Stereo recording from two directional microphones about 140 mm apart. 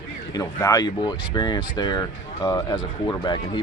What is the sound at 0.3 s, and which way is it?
Speech, 25° left (ahead or behind).